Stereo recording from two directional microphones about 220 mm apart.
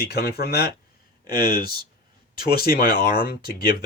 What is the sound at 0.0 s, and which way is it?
Speech, 45° left (ahead or behind).